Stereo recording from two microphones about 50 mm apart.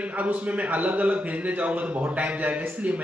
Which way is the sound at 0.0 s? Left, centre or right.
Right.